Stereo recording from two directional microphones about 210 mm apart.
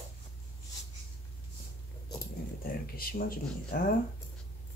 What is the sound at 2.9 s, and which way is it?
Speech, 45° left (ahead or behind).